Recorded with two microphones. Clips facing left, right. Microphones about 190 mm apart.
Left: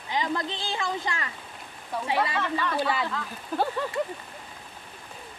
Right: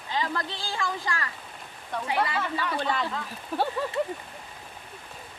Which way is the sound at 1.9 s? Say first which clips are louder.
Left 1 dB; 5° left (ahead or behind).